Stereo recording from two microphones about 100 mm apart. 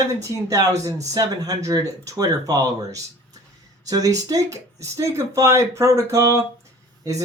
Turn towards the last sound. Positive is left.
turn(degrees=-35)  # may be behind; listen again after turning